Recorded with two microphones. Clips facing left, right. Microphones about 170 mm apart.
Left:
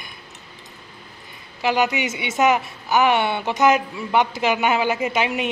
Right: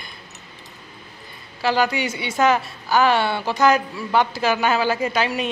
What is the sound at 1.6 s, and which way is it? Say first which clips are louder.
A woman's voice: even; 20° left (ahead or behind).